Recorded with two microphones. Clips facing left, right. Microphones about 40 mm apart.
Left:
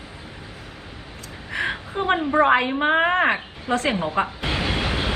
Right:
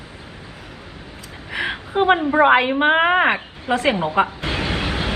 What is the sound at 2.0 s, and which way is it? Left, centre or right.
A woman's voice, right.